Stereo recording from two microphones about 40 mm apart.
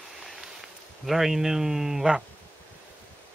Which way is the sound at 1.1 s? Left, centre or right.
Centre.